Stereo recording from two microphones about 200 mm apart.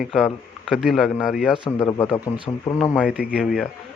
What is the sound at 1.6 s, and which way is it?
Speech, 15° left (ahead or behind).